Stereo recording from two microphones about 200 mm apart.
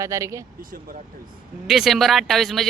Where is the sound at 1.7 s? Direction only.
Centre (ahead or behind).